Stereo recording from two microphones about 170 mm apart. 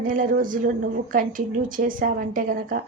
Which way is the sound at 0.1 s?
55° right (ahead or behind).